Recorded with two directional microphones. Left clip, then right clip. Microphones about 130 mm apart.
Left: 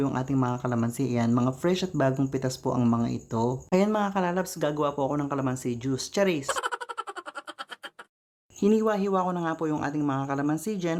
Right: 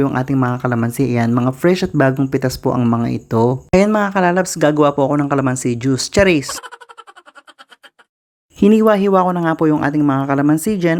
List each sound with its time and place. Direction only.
0.0 s speech: 35° right (ahead or behind)
6.5 s a sound: centre (ahead or behind)
8.5 s speech: 45° right (ahead or behind)